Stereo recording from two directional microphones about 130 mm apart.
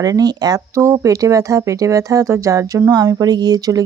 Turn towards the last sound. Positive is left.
turn(degrees=-30)  # may be behind; listen again after turning